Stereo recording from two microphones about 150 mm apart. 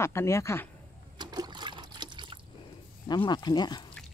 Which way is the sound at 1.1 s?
25° right (ahead or behind).